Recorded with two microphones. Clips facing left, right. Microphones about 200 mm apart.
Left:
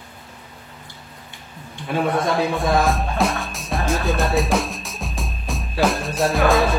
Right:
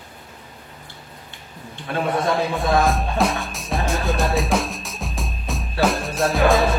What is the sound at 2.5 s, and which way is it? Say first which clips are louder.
Music: even; centre (ahead or behind).